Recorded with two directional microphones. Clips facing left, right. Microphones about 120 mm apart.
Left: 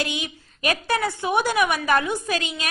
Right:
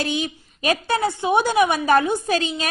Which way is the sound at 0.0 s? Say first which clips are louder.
Right 4 dB; 35° right (ahead or behind).